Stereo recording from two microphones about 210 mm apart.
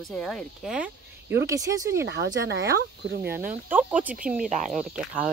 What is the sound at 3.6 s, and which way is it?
Speech, 5° right (ahead or behind).